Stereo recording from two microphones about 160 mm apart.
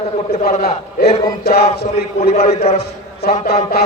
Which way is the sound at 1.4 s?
85° left.